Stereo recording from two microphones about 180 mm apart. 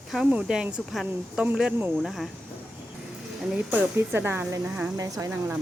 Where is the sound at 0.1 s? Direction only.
5° right (ahead or behind).